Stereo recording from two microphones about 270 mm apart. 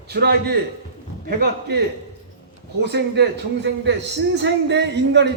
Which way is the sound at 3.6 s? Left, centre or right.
Right.